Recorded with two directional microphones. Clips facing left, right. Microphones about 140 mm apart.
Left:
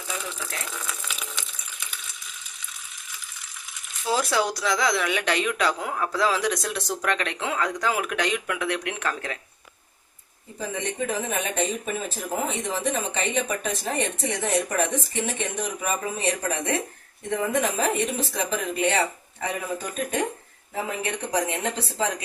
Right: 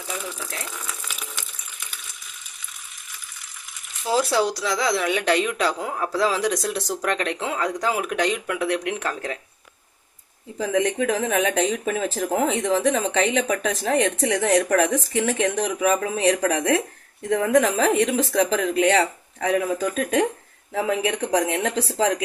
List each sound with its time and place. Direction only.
4.1 s speech: 30° right (ahead or behind)
10.6 s speech: 90° right